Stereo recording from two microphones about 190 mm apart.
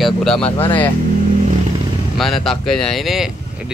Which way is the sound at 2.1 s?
Centre (ahead or behind).